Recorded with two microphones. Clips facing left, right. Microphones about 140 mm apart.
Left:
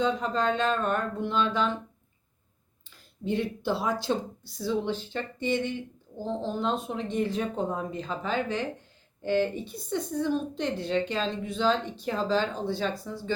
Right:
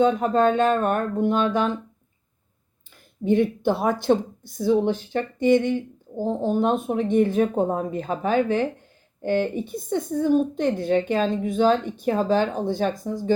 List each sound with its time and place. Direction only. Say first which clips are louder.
0.0 s a woman's voice: right 8 dB; 50° right (ahead or behind)
2.9 s a woman's voice: right 9 dB; 55° right (ahead or behind)